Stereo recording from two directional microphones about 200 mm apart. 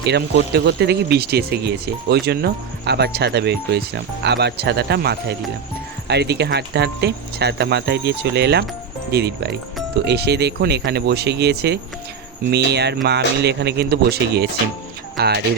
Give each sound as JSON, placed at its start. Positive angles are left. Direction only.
{"t": 0.0, "sound": "speech", "side_deg": -55}